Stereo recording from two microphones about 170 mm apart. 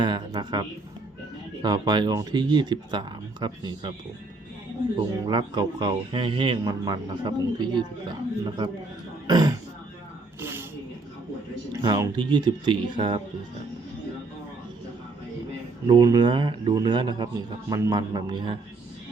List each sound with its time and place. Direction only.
0.0 s speech: 25° right (ahead or behind)
1.6 s speech: 25° right (ahead or behind)
4.9 s speech: 30° right (ahead or behind)
9.2 s speech: 25° right (ahead or behind)
10.4 s a sound: 15° right (ahead or behind)
11.8 s speech: 25° right (ahead or behind)
15.9 s speech: 25° right (ahead or behind)